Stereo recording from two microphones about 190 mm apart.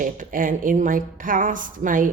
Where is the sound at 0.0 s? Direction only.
45° right (ahead or behind).